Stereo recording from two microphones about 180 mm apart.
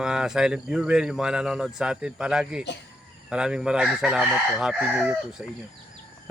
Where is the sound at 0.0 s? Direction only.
5° right (ahead or behind).